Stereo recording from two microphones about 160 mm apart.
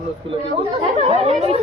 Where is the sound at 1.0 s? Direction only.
40° right (ahead or behind).